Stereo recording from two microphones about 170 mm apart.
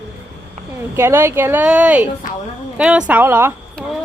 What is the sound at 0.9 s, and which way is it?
Speech, 15° right (ahead or behind).